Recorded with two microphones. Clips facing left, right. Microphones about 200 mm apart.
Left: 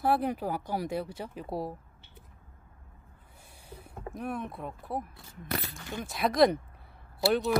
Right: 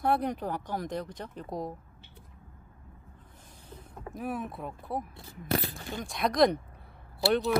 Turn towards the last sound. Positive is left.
turn(degrees=0)  # may be behind; listen again after turning